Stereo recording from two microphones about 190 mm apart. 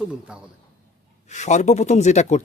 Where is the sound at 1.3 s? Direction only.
40° left (ahead or behind).